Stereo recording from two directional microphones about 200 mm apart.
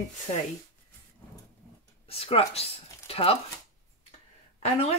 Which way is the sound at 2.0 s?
30° left (ahead or behind).